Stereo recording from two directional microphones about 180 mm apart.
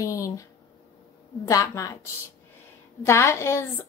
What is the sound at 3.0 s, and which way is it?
Speech, 15° left (ahead or behind).